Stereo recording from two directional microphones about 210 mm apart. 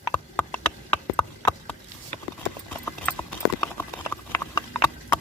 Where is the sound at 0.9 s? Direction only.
10° left (ahead or behind).